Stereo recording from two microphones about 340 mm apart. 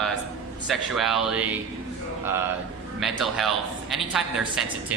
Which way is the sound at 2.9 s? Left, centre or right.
Centre.